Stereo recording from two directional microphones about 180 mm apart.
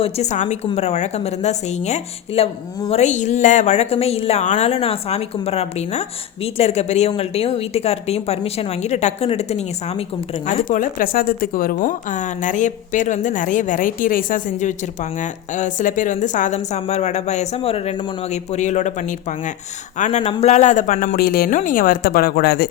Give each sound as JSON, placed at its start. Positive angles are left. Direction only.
{"t": 0.0, "sound": "a woman's voice", "side_deg": 40}